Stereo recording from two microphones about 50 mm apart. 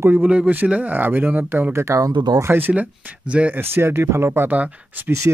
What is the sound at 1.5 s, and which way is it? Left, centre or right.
Speech, right.